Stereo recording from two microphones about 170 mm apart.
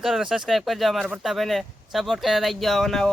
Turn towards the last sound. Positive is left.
turn(degrees=0)  # may be behind; listen again after turning